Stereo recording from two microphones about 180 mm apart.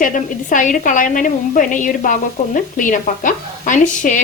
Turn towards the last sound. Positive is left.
turn(degrees=45)  # may be behind; listen again after turning